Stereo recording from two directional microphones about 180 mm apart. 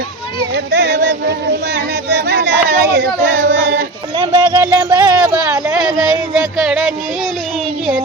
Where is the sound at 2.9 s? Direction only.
60° right (ahead or behind).